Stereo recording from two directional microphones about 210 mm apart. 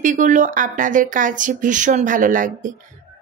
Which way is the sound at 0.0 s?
35° right (ahead or behind).